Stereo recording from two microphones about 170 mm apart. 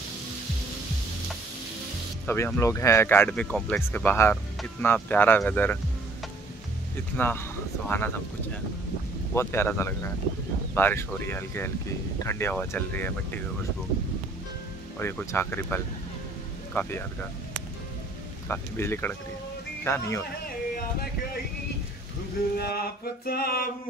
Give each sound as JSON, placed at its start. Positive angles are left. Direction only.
{"t": 2.2, "sound": "speech", "side_deg": 15}
{"t": 7.2, "sound": "speech", "side_deg": 15}
{"t": 9.3, "sound": "speech", "side_deg": 15}
{"t": 15.0, "sound": "speech", "side_deg": 15}
{"t": 18.5, "sound": "speech", "side_deg": 15}
{"t": 20.4, "sound": "music", "side_deg": 60}
{"t": 22.6, "sound": "a sound", "side_deg": 65}